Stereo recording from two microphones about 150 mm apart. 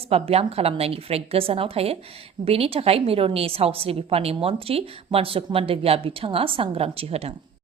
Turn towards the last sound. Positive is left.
turn(degrees=-40)  # may be behind; listen again after turning